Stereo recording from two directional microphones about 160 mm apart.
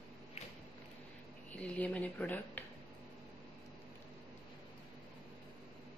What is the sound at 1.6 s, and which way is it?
Speech, 10° left (ahead or behind).